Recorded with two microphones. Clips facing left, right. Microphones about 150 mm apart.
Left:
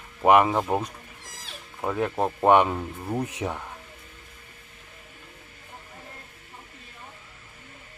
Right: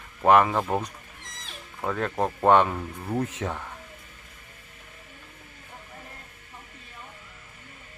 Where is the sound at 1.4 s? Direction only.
15° left (ahead or behind).